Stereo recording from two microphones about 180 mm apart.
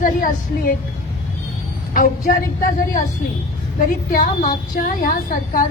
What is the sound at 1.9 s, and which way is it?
A woman's voice, 50° left (ahead or behind).